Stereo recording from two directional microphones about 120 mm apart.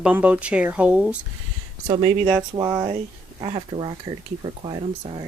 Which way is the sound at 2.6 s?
25° right (ahead or behind).